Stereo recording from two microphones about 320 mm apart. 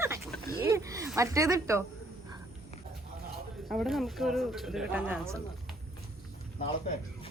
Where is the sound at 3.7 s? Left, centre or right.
Centre.